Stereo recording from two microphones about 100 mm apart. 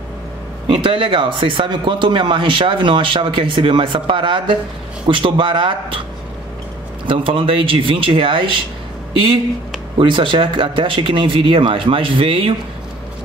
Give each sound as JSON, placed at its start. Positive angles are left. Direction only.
{"t": 0.8, "sound": "speech", "side_deg": -60}
{"t": 7.1, "sound": "speech", "side_deg": -60}
{"t": 9.9, "sound": "speech", "side_deg": -55}